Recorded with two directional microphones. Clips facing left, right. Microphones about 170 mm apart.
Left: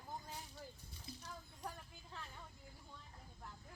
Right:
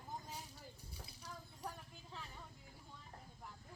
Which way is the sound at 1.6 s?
10° right (ahead or behind).